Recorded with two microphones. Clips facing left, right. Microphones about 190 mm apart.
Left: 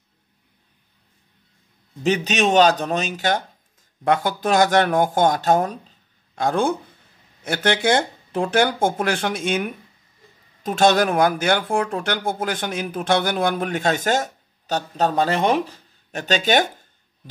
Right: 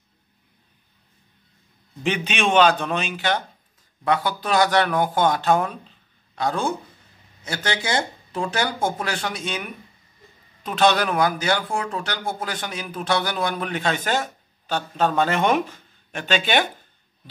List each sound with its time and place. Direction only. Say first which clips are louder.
2.0 s speech: left 4 dB; 40° left (ahead or behind)